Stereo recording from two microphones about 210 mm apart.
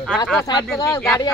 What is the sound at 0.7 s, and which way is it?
Speech, 15° left (ahead or behind).